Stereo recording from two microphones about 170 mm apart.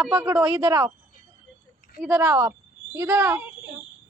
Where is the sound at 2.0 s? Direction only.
10° right (ahead or behind).